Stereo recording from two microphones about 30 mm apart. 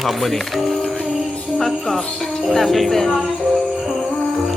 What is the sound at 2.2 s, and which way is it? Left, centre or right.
Speech, centre.